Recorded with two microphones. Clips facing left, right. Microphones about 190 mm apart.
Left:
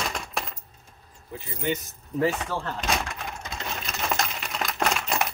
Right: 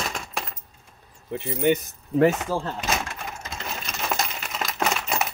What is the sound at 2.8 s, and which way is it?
Sewing machine, centre (ahead or behind).